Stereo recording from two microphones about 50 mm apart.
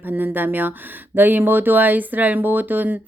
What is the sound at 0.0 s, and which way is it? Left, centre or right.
Speech, right.